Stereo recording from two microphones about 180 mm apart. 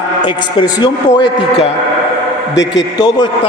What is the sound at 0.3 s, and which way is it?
A man's voice, 25° left (ahead or behind).